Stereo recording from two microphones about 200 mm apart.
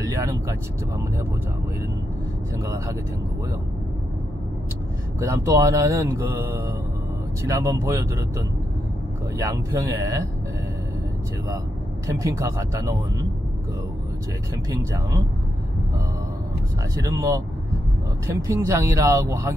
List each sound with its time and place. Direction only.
0.0 s speech: 15° right (ahead or behind)
2.6 s speech: 15° right (ahead or behind)
5.2 s speech: 15° right (ahead or behind)
12.2 s speech: 15° right (ahead or behind)
14.7 s speech: 15° right (ahead or behind)
17.0 s speech: 15° right (ahead or behind)
18.5 s speech: 15° right (ahead or behind)